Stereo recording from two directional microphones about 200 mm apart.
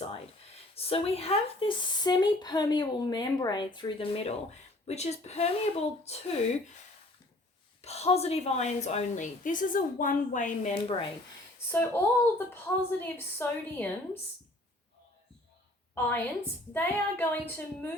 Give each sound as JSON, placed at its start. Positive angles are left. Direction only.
{"t": 0.8, "sound": "a woman's voice", "side_deg": 30}
{"t": 7.8, "sound": "a woman's voice", "side_deg": 30}
{"t": 11.7, "sound": "a woman's voice", "side_deg": 10}
{"t": 16.7, "sound": "a woman's voice", "side_deg": 10}